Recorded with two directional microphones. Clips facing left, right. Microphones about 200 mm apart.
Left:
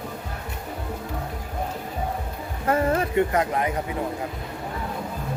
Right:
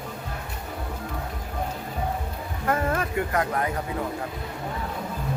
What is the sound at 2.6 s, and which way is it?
Music, 25° left (ahead or behind).